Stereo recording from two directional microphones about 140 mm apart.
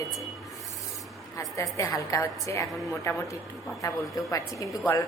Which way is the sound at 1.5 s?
20° left (ahead or behind).